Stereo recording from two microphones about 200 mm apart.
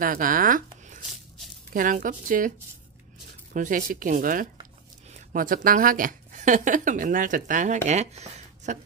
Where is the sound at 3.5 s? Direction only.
40° right (ahead or behind).